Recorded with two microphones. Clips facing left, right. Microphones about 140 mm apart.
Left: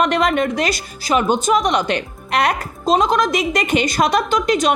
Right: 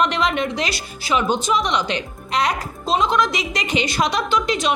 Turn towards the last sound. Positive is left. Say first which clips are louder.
# left 4 dB
turn(degrees=45)  # may be behind; listen again after turning